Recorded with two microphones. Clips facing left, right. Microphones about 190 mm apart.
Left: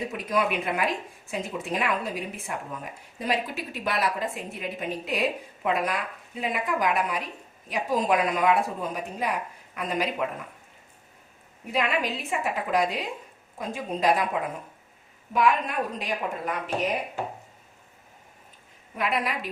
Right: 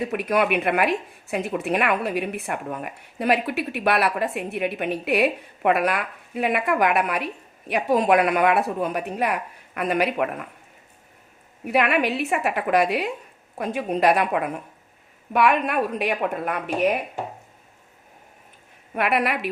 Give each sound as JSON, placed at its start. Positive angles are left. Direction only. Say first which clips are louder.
{"t": 0.1, "sound": "speech", "louder": "right 5 dB", "side_deg": -65}
{"t": 11.6, "sound": "speech", "louder": "right 6 dB", "side_deg": -65}
{"t": 18.9, "sound": "speech", "louder": "right 5 dB", "side_deg": -65}